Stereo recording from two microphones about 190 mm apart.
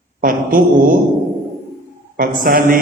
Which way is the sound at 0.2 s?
45° right (ahead or behind).